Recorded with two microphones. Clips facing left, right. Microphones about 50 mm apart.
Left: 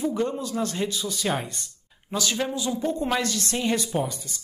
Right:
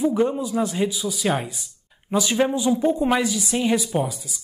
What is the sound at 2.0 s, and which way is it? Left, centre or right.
A woman's voice, centre.